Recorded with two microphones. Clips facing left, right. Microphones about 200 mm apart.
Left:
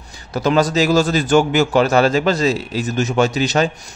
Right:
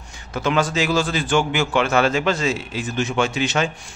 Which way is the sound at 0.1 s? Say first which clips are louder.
Left 5 dB; 35° left (ahead or behind).